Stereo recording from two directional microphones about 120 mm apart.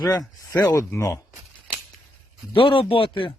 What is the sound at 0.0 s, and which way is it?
Speech, 30° left (ahead or behind).